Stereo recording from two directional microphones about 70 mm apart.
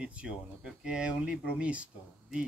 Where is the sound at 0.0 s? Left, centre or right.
Centre.